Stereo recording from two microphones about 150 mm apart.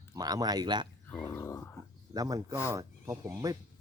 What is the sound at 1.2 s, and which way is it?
Speech, 20° left (ahead or behind).